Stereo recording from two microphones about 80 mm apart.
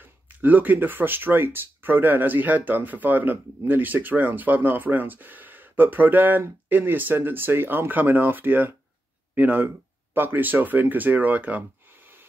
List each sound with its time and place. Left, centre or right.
0.0 s speech: right